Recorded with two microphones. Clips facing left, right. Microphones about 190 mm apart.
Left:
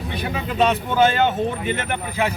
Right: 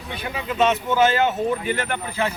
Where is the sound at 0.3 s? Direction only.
35° left (ahead or behind).